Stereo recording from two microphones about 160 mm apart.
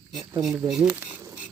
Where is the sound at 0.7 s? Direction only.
5° right (ahead or behind).